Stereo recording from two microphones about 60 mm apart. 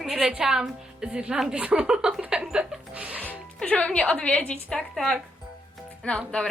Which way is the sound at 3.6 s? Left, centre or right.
Centre.